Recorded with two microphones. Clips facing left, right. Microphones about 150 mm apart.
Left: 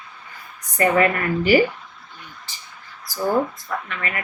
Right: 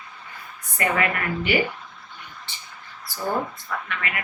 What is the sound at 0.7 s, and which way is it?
Speech, 35° left (ahead or behind).